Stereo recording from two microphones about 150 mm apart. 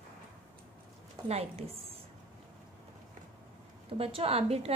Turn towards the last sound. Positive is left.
turn(degrees=-40)  # may be behind; listen again after turning